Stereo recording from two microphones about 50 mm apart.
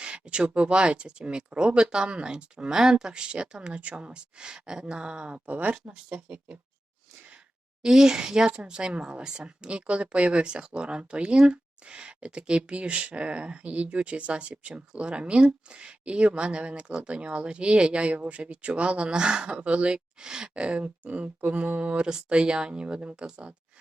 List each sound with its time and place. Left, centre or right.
0.0 s speech: right
5.5 s speech: right
5.9 s speech: right
7.8 s speech: centre